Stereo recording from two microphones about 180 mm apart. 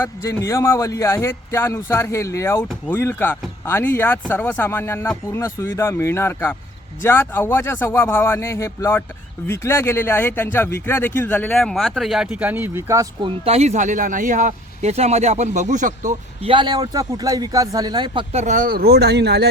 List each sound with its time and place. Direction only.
0.0 s speech: 15° left (ahead or behind); by 13.1 s 15° right (ahead or behind)
13.2 s speech: 35° right (ahead or behind)
16.4 s a man's voice: 30° right (ahead or behind); by 19.5 s 65° right (ahead or behind)